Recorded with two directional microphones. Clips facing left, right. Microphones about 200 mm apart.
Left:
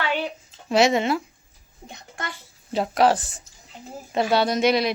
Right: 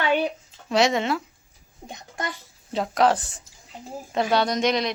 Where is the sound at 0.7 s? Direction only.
5° left (ahead or behind).